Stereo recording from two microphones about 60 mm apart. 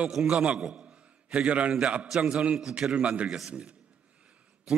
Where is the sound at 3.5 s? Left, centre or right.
Centre.